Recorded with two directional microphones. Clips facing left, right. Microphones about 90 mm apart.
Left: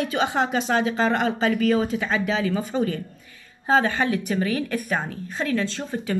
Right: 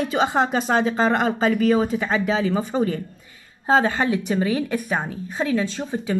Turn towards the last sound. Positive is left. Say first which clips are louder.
# right 2 dB
turn(degrees=-15)  # may be behind; listen again after turning